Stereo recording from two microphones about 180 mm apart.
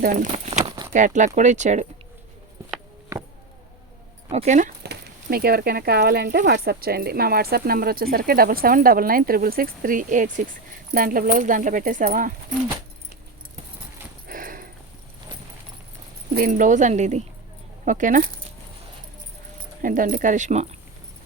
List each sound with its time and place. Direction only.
0.0 s speech: 45° right (ahead or behind)
0.6 s a sound: 20° right (ahead or behind)
0.9 s speech: 45° right (ahead or behind)
4.3 s speech: 40° right (ahead or behind)
4.8 s speech: 60° right (ahead or behind)
14.3 s horse: 50° right (ahead or behind)
16.3 s speech: 50° right (ahead or behind)
19.8 s speech: 50° right (ahead or behind)